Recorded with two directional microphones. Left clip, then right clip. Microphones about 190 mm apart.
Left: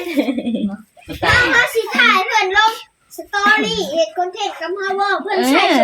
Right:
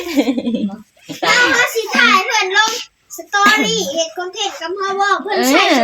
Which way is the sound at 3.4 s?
50° right (ahead or behind).